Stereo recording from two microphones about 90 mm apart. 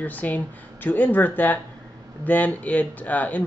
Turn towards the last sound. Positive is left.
turn(degrees=20)  # may be behind; listen again after turning